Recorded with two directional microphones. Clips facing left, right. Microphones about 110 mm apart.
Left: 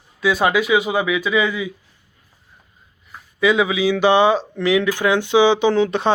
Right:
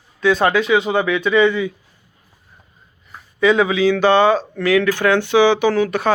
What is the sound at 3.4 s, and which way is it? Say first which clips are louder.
Speech: right 2 dB; 5° left (ahead or behind).